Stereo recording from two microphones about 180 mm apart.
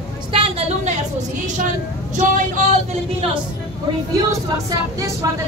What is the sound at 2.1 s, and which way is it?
Vehicle, 45° right (ahead or behind).